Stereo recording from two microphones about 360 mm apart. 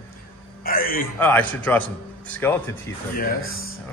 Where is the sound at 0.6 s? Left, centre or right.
Left.